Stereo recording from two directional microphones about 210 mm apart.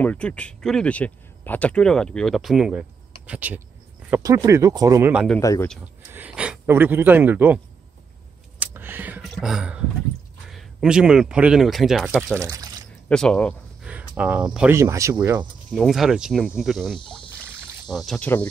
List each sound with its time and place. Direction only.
0.0 s speech: 5° left (ahead or behind); by 5.1 s 15° right (ahead or behind)
5.1 s speech: centre (ahead or behind)
5.4 s speech: 15° left (ahead or behind)
6.1 s speech: 5° right (ahead or behind)
8.5 s a sound: 10° right (ahead or behind)
9.3 s speech: centre (ahead or behind)
12.4 s speech: 15° right (ahead or behind)
13.1 s speech: 5° left (ahead or behind)
13.8 s speech: 5° right (ahead or behind)
15.7 s speech: centre (ahead or behind)